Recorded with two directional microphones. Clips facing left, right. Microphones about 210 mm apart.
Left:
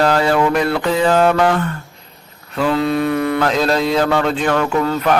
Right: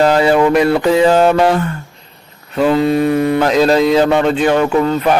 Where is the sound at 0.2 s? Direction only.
15° right (ahead or behind).